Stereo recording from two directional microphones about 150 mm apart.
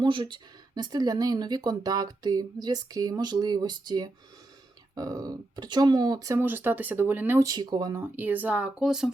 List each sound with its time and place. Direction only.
0.0 s speech: 35° right (ahead or behind)
8.0 s speech: 10° right (ahead or behind)